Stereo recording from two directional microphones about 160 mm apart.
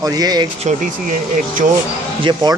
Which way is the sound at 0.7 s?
45° right (ahead or behind).